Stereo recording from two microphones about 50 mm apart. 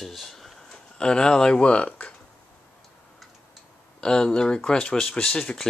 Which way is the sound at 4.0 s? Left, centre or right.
Centre.